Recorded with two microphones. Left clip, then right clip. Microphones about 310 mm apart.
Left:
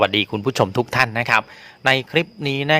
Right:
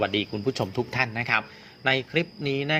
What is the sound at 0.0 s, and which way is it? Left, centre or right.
A man's voice, left.